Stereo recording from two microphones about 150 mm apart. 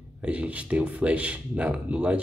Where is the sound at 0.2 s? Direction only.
10° right (ahead or behind).